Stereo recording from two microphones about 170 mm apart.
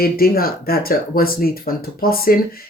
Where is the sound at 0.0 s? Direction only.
60° left (ahead or behind).